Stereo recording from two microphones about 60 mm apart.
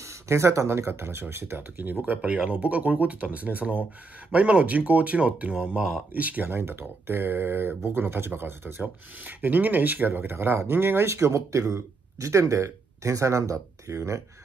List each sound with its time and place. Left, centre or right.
0.0 s speech: right
6.5 s speech: right